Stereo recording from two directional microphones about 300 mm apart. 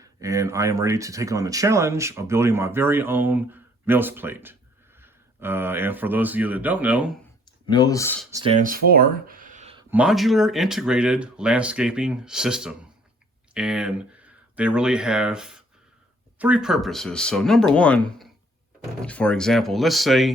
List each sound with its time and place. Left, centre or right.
0.0 s speech: centre
7.7 s speech: centre
8.3 s speech: centre
8.6 s speech: right
9.9 s speech: centre